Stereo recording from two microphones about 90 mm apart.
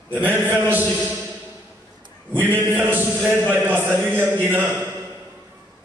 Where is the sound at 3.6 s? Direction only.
20° right (ahead or behind).